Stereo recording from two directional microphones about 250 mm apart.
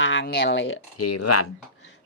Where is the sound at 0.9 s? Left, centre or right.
Left.